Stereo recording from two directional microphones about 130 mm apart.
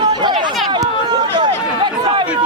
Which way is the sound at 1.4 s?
35° right (ahead or behind).